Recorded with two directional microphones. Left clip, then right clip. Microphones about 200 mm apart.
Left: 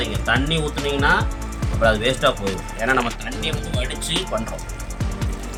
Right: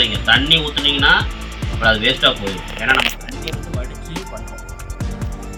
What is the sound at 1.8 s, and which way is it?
Speech, 35° left (ahead or behind).